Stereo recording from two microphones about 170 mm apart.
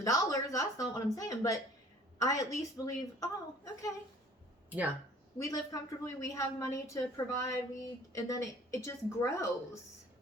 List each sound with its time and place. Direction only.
0.0 s a woman's voice: 20° left (ahead or behind)
5.4 s a woman's voice: 20° left (ahead or behind)